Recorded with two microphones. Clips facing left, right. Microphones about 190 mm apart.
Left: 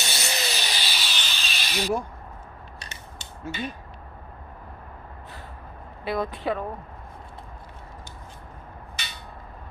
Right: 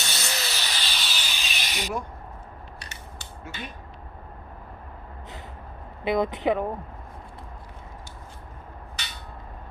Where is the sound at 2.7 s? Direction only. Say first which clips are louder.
Even; 25° left (ahead or behind).